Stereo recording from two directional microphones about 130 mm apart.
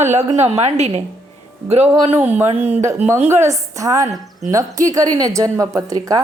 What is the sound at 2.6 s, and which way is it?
Speech, 55° right (ahead or behind).